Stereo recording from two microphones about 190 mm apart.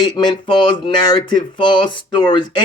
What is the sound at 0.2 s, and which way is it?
Speech, 25° left (ahead or behind).